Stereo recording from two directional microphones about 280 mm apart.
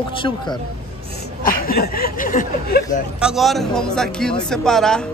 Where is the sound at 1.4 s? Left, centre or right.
Left.